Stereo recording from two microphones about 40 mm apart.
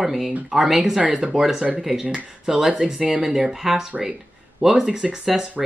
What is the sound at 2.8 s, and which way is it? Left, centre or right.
Speech, right.